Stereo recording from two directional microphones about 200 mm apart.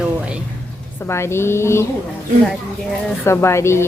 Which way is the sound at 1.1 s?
15° left (ahead or behind).